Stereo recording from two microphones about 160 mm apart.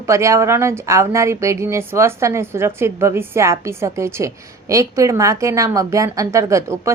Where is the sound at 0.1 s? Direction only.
20° right (ahead or behind).